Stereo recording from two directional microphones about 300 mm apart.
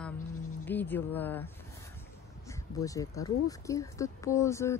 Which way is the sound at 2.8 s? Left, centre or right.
Centre.